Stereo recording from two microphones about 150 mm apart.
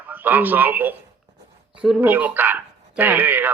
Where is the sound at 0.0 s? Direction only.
10° right (ahead or behind).